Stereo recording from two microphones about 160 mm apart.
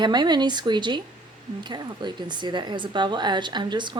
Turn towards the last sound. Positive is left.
turn(degrees=-30)  # may be behind; listen again after turning